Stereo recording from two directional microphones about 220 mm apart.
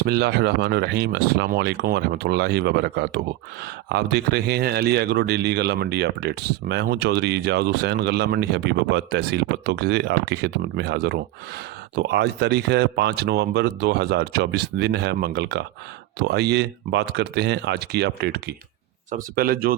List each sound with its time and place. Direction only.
0.0 s speech: 45° right (ahead or behind)